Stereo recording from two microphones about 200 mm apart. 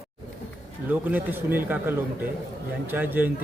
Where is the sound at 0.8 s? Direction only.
10° right (ahead or behind).